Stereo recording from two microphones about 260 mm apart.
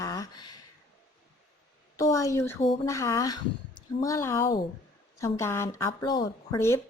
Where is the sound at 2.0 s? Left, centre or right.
Centre.